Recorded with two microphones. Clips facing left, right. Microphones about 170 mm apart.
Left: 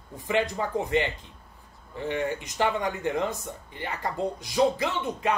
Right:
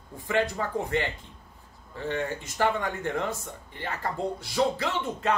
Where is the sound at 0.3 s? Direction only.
20° left (ahead or behind).